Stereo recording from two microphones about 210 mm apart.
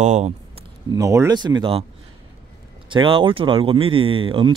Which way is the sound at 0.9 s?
15° right (ahead or behind).